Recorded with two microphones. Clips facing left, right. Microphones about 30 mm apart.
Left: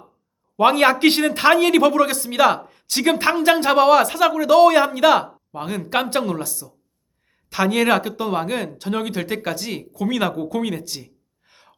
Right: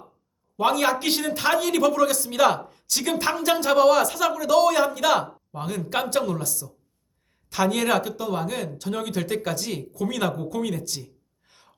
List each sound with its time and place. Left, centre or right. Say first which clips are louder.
0.5 s a man's voice: left 6 dB; left